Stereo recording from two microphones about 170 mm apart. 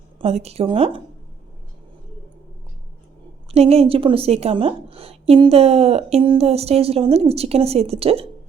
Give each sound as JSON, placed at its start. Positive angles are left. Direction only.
{"t": 0.2, "sound": "a woman's voice", "side_deg": -40}
{"t": 3.5, "sound": "a woman's voice", "side_deg": -35}